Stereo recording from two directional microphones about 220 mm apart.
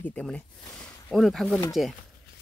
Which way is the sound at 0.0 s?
5° left (ahead or behind).